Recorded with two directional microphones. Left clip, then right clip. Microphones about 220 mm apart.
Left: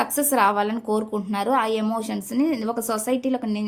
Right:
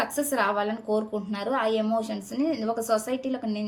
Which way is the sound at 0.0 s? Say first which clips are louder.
Left 6 dB; 50° left (ahead or behind).